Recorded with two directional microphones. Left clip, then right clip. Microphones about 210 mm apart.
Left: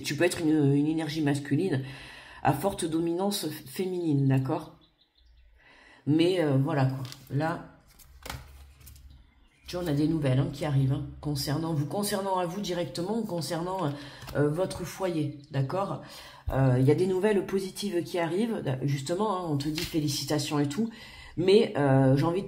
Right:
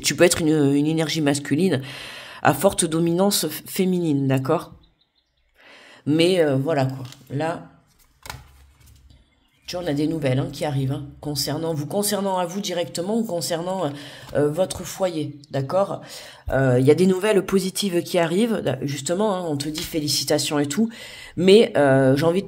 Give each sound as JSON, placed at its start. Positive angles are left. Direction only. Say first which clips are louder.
{"t": 0.0, "sound": "speech", "louder": "right 9 dB", "side_deg": -45}
{"t": 5.7, "sound": "speech", "louder": "right 5 dB", "side_deg": -50}
{"t": 9.7, "sound": "speech", "louder": "right 5 dB", "side_deg": -50}